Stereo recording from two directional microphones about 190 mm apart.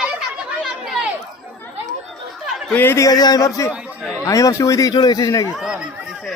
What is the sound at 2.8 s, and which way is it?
Speech, 15° left (ahead or behind).